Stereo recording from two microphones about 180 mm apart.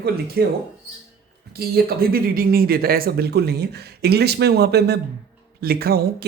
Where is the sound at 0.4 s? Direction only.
60° right (ahead or behind).